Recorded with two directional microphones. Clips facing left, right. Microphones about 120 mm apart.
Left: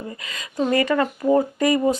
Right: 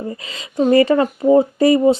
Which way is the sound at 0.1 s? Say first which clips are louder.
Right 5 dB; 30° right (ahead or behind).